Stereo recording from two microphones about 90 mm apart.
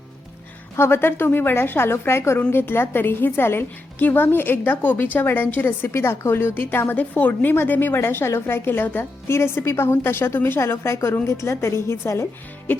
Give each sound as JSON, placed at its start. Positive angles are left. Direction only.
{"t": 0.8, "sound": "a woman's voice", "side_deg": 25}